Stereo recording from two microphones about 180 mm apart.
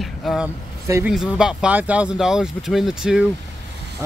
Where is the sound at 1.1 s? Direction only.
5° right (ahead or behind).